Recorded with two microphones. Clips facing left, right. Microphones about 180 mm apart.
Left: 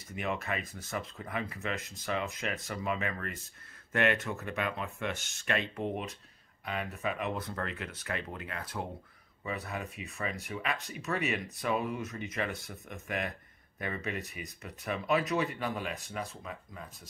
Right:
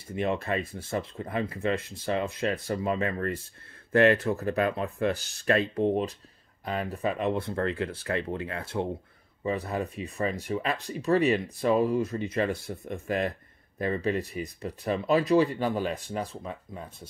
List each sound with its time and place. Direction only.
0.1 s speech: 30° right (ahead or behind)